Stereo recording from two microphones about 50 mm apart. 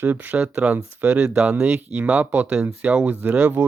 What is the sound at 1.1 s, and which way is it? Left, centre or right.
Speech, centre.